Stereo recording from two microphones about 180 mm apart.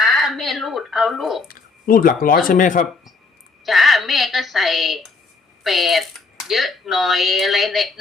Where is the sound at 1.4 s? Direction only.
55° left (ahead or behind).